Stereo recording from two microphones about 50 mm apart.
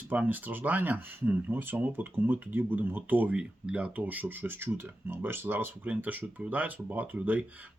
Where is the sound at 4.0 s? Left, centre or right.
Right.